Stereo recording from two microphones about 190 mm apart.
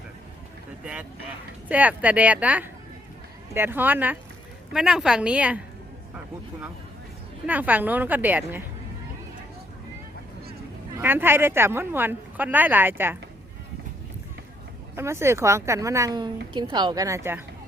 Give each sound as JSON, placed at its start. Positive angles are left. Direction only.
{"t": 1.6, "sound": "a woman's voice", "side_deg": -10}
{"t": 7.4, "sound": "speech", "side_deg": -10}
{"t": 10.9, "sound": "speech", "side_deg": -10}
{"t": 14.9, "sound": "a woman's voice", "side_deg": -15}